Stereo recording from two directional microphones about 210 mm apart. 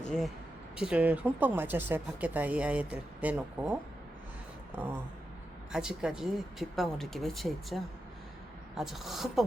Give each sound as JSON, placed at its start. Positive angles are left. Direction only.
{"t": 0.8, "sound": "speech", "side_deg": -5}
{"t": 5.7, "sound": "speech", "side_deg": -5}